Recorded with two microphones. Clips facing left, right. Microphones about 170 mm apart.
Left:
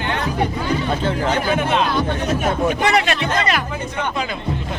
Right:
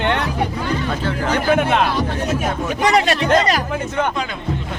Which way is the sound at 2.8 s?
35° right (ahead or behind).